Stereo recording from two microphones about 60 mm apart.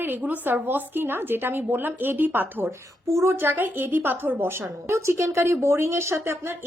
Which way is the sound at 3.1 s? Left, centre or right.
Right.